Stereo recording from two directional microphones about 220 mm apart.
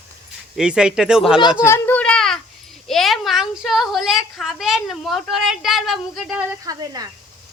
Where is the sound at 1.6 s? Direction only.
10° left (ahead or behind).